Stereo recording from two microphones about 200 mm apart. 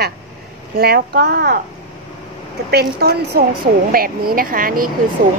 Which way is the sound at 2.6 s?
50° right (ahead or behind).